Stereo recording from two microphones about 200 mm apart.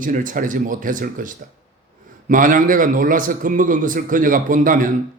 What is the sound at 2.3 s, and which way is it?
A man's voice, 40° right (ahead or behind).